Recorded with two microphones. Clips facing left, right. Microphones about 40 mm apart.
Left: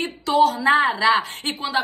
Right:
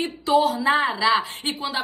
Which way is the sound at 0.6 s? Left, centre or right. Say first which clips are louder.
Left 3 dB; left.